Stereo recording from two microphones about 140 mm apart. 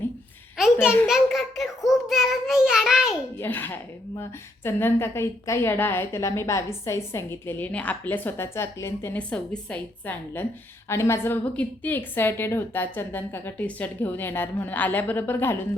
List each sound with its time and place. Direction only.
0.5 s a sound: 5° right (ahead or behind)
1.0 s a child's voice: centre (ahead or behind)
3.3 s a woman's voice: 15° left (ahead or behind)